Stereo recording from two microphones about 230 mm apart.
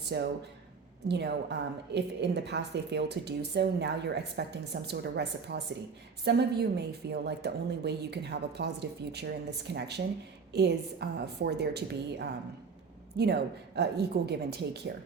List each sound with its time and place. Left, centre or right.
0.0 s a woman's voice: right